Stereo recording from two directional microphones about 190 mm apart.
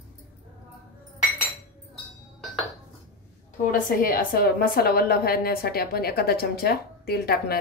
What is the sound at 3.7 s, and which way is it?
A woman's voice, 50° left (ahead or behind).